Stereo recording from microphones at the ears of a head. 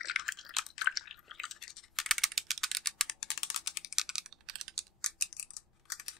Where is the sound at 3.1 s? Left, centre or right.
Left.